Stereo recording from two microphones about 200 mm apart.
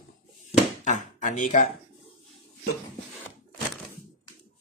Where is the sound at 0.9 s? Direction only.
40° left (ahead or behind).